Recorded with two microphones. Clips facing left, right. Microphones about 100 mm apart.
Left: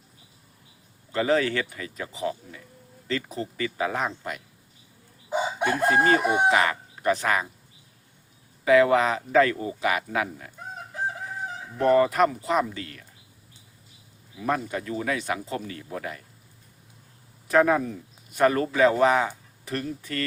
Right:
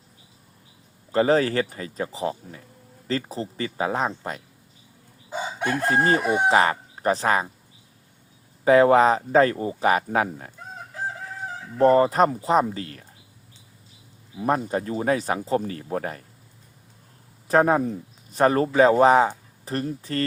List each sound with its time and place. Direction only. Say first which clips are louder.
1.1 s speech: right 4 dB; 35° right (ahead or behind)
5.3 s chicken: left 2 dB; 20° left (ahead or behind)
6.5 s speech: right 3 dB; 35° right (ahead or behind)
8.6 s speech: right 3 dB; 35° right (ahead or behind)
11.8 s speech: right 3 dB; 30° right (ahead or behind)
14.3 s speech: right 4 dB; 35° right (ahead or behind)
17.5 s speech: right 2 dB; 35° right (ahead or behind)